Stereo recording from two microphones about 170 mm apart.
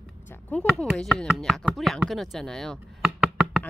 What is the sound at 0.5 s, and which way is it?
Speech, 5° left (ahead or behind).